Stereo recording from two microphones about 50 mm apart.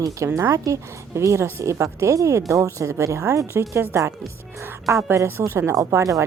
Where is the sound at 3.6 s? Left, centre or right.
Right.